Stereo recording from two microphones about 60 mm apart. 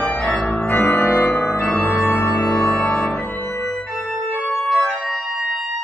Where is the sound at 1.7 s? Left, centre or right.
Left.